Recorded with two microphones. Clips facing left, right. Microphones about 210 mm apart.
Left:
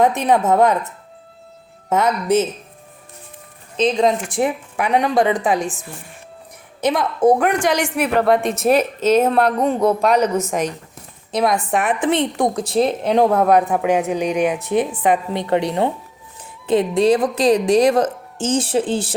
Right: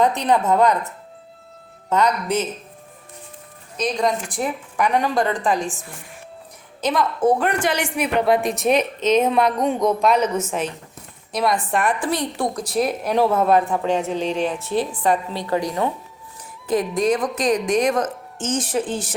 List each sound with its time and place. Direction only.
0.0 s speech: 20° left (ahead or behind)
1.9 s speech: 20° left (ahead or behind)
3.8 s speech: 25° left (ahead or behind)
4.8 s a woman's voice: 10° left (ahead or behind)
5.2 s speech: 20° left (ahead or behind)
7.6 s speech: 10° right (ahead or behind)
7.9 s a woman's voice: 5° left (ahead or behind)
10.2 s speech: 5° right (ahead or behind)
10.5 s a woman's voice: 15° left (ahead or behind)
11.3 s speech: centre (ahead or behind)
11.9 s a woman's voice: 20° left (ahead or behind)